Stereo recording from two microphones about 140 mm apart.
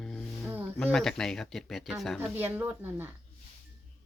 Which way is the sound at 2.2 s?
15° right (ahead or behind).